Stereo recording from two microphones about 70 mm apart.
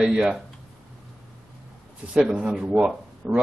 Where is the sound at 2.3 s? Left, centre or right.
Centre.